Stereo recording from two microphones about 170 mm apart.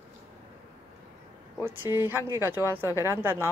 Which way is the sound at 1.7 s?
10° right (ahead or behind).